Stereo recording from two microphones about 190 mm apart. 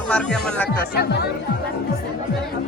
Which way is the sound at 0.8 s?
55° left (ahead or behind).